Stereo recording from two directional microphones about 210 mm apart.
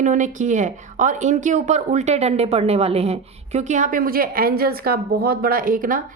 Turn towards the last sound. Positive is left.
turn(degrees=-40)  # may be behind; listen again after turning